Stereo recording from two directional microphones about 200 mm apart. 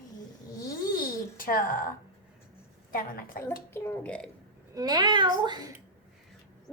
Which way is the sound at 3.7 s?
10° left (ahead or behind).